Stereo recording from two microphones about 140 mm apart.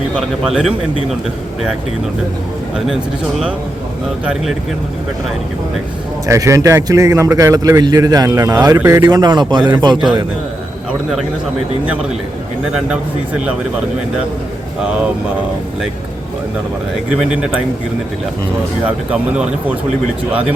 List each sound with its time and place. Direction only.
0.4 s speech: 5° right (ahead or behind)
2.7 s speech: centre (ahead or behind)
6.2 s a man's voice: 20° right (ahead or behind)
12.9 s speech: 10° right (ahead or behind)
17.2 s speech: 5° right (ahead or behind)
18.9 s speech: 10° right (ahead or behind)